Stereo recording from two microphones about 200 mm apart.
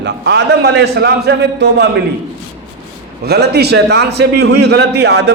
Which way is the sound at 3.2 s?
55° right (ahead or behind).